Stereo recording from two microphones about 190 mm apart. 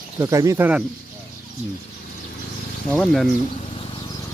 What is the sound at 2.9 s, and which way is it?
Speech, 5° left (ahead or behind).